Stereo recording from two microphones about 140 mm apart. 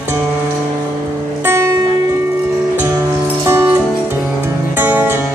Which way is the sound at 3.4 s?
15° right (ahead or behind).